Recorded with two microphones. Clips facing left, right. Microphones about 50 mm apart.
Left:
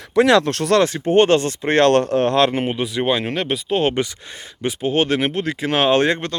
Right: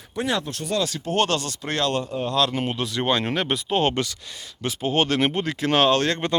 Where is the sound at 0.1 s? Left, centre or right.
Left.